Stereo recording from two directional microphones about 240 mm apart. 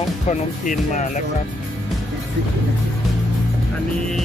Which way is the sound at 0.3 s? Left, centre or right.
Left.